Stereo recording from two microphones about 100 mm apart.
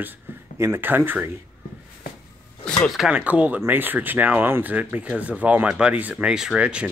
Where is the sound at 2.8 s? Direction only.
Centre (ahead or behind).